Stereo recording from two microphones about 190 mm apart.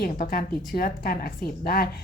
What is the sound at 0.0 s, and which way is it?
A woman's voice, 50° left (ahead or behind).